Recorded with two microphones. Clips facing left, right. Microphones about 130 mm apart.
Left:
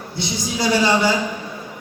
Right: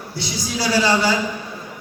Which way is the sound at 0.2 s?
20° left (ahead or behind).